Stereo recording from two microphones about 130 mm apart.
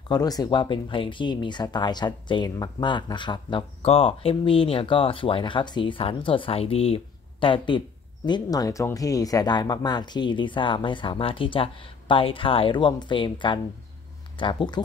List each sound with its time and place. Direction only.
0.1 s speech: 30° left (ahead or behind)
3.8 s speech: 50° left (ahead or behind)
8.3 s speech: 30° left (ahead or behind)